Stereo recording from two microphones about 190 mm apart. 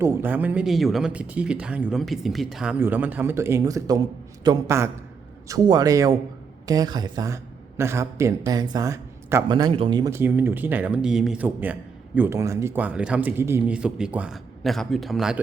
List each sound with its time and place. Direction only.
0.0 s a man's voice: 10° right (ahead or behind)